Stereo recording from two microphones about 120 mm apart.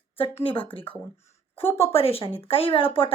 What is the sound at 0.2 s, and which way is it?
Speech, 45° left (ahead or behind).